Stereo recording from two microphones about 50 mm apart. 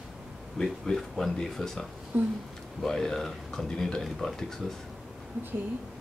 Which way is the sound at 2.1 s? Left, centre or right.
Right.